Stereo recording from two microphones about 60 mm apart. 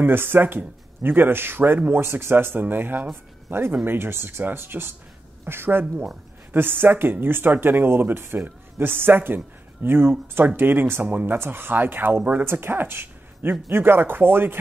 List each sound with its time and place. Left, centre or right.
0.0 s speech: right